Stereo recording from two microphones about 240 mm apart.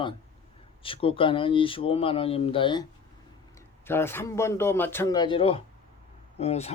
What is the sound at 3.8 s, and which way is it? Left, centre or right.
A man's voice, centre.